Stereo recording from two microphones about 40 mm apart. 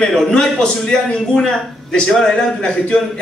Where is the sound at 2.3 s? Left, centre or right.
Left.